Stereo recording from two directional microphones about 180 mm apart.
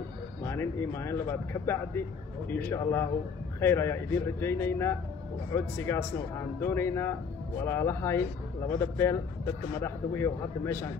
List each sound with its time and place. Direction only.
0.5 s speech: 15° left (ahead or behind)